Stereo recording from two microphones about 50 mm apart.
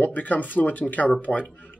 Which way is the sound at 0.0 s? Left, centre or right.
Left.